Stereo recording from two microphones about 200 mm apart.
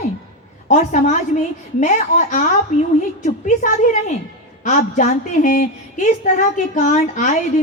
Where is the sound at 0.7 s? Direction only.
35° left (ahead or behind).